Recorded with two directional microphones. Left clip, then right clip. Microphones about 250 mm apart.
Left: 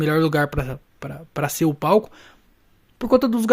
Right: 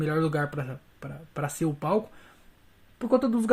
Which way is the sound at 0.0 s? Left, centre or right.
Left.